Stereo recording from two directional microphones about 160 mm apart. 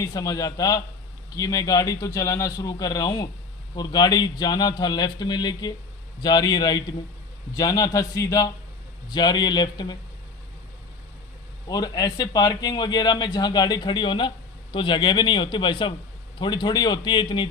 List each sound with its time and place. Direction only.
0.0 s speech: 20° left (ahead or behind)
11.7 s speech: 25° left (ahead or behind)